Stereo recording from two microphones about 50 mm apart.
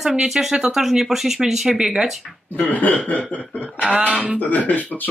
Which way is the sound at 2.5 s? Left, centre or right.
Left.